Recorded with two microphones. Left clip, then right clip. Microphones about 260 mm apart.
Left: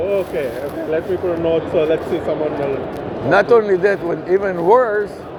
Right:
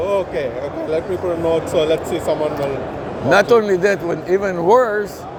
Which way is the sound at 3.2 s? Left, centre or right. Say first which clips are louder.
Even; right.